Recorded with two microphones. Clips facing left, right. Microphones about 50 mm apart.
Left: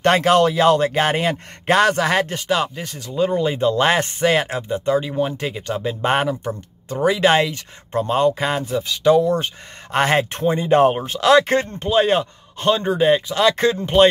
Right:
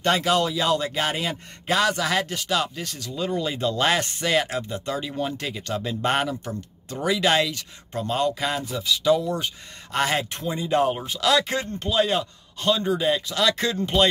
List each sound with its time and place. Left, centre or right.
0.0 s a man's voice: left